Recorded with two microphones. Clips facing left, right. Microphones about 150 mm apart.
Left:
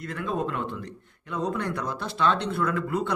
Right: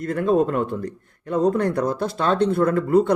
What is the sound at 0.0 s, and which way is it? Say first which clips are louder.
A man's voice: right 10 dB; 45° right (ahead or behind).